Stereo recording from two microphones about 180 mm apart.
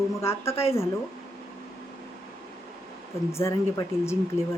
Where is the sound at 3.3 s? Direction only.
15° left (ahead or behind).